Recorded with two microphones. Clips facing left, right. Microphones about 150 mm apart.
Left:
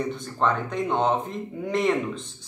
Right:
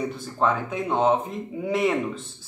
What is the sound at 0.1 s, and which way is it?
Speech, 5° right (ahead or behind).